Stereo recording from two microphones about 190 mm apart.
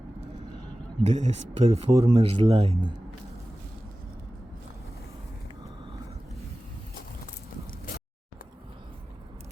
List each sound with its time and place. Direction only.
1.0 s a man's voice: 35° right (ahead or behind)